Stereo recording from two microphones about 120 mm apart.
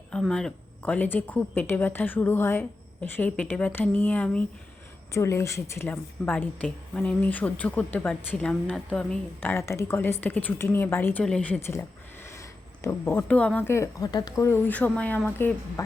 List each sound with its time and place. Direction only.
0.1 s a woman's voice: 5° left (ahead or behind)
5.1 s a woman's voice: 25° left (ahead or behind)
11.2 s a woman's voice: 10° left (ahead or behind)
11.6 s a sound: 20° left (ahead or behind)
13.2 s a woman's voice: 10° left (ahead or behind)
13.7 s speech: 25° left (ahead or behind)
14.4 s a woman's voice: 15° left (ahead or behind)